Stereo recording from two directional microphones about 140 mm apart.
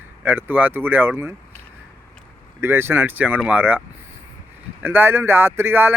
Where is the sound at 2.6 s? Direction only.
15° right (ahead or behind).